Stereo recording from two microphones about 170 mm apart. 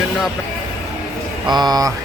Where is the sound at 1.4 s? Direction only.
25° right (ahead or behind).